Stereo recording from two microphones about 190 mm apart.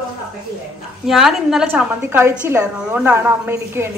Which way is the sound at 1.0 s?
Centre (ahead or behind).